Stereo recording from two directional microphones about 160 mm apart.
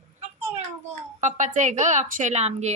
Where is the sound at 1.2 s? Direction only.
50° right (ahead or behind).